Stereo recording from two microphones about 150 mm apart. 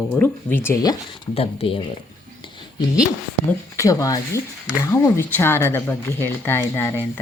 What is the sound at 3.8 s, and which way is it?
Speech, 25° left (ahead or behind).